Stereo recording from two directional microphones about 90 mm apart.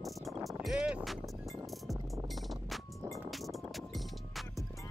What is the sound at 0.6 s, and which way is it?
Vehicle, 5° right (ahead or behind).